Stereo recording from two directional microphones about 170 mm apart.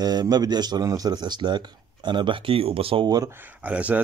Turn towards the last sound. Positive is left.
turn(degrees=-10)  # may be behind; listen again after turning